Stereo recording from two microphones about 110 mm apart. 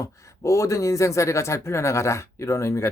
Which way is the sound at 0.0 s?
30° left (ahead or behind).